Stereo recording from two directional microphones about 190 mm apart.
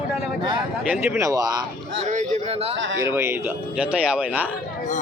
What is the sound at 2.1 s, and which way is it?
Speech, 40° right (ahead or behind).